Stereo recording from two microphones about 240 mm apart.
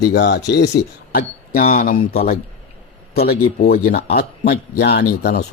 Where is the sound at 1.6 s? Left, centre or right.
Left.